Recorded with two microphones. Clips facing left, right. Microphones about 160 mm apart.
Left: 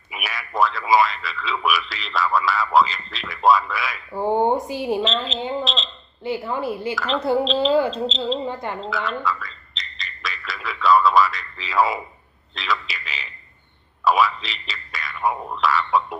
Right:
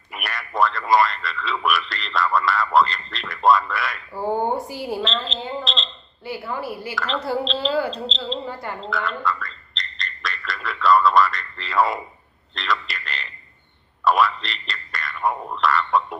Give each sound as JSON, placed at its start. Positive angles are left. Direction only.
{"t": 0.1, "sound": "speech", "side_deg": 0}
{"t": 4.1, "sound": "speech", "side_deg": 20}
{"t": 5.0, "sound": "speech", "side_deg": 0}
{"t": 5.6, "sound": "a sound", "side_deg": 0}
{"t": 6.2, "sound": "speech", "side_deg": 20}
{"t": 6.9, "sound": "speech", "side_deg": 0}
{"t": 7.2, "sound": "speech", "side_deg": 20}
{"t": 7.4, "sound": "speech", "side_deg": 0}
{"t": 8.4, "sound": "speech", "side_deg": 20}
{"t": 8.8, "sound": "gargling", "side_deg": 0}
{"t": 12.5, "sound": "speech", "side_deg": 0}
{"t": 14.0, "sound": "a sound", "side_deg": 0}